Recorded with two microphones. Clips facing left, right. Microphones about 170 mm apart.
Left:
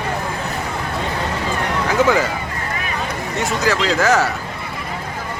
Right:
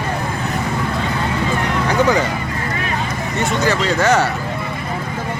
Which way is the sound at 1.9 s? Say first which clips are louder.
Even; centre (ahead or behind).